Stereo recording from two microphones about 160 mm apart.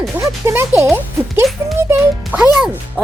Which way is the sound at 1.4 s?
Centre (ahead or behind).